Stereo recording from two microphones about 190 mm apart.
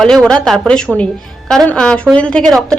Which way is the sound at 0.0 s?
5° left (ahead or behind).